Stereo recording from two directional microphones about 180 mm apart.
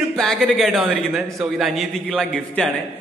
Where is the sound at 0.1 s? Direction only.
5° left (ahead or behind).